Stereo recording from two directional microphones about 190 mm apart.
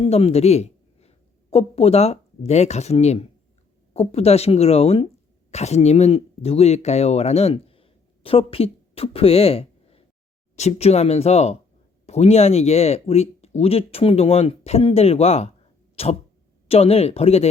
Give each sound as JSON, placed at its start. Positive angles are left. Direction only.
{"t": 0.0, "sound": "speech", "side_deg": 30}